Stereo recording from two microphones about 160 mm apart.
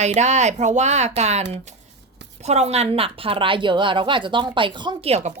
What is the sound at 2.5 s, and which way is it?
Speech, 40° right (ahead or behind).